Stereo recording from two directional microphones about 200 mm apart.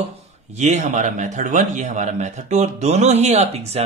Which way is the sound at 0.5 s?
35° right (ahead or behind).